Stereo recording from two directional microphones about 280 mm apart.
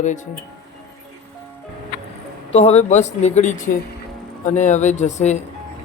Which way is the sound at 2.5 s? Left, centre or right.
Left.